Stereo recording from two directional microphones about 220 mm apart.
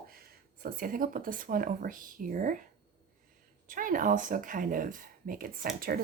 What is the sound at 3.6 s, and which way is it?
Speech, 40° right (ahead or behind).